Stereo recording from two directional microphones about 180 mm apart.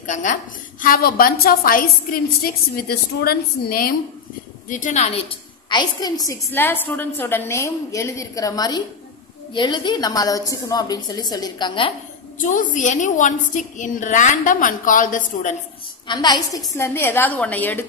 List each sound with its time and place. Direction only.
0.0 s a woman's voice: 45° left (ahead or behind)
5.7 s a woman's voice: 25° left (ahead or behind)
12.4 s a woman's voice: 45° left (ahead or behind)
16.1 s a woman's voice: 25° left (ahead or behind)